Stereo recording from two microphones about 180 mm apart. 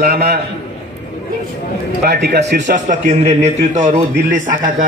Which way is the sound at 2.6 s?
45° right (ahead or behind).